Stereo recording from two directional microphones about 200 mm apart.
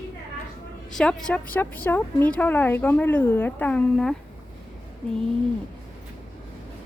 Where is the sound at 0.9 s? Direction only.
5° left (ahead or behind).